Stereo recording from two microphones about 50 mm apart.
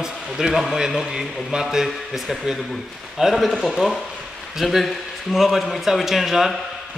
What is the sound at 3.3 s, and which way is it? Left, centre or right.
A man's voice, centre.